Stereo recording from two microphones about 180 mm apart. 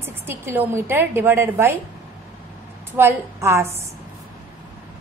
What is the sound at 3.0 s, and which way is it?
Speech, 15° right (ahead or behind).